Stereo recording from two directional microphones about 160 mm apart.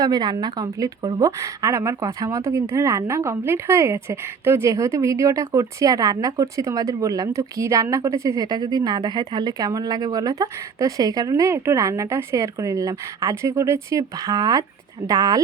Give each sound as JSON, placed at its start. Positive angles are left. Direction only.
{"t": 0.0, "sound": "a woman's voice", "side_deg": -25}